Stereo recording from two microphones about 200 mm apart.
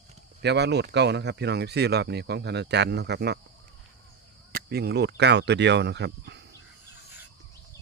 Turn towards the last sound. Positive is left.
turn(degrees=-60)  # may be behind; listen again after turning